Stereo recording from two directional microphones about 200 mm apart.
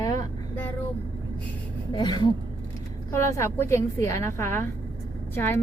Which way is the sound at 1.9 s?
20° left (ahead or behind).